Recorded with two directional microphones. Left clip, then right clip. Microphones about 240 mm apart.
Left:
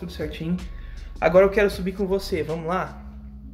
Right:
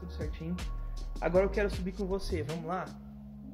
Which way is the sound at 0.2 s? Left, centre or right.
Centre.